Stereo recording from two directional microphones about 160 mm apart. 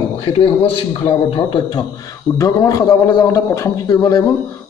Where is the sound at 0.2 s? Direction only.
30° left (ahead or behind).